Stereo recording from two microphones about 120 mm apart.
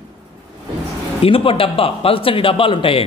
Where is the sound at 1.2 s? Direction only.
50° left (ahead or behind).